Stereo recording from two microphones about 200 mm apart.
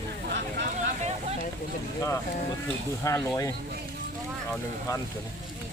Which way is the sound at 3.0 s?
15° left (ahead or behind).